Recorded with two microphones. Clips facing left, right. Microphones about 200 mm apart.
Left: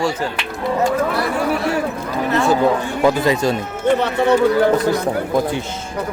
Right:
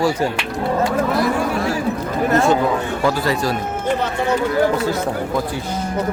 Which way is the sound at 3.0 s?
20° left (ahead or behind).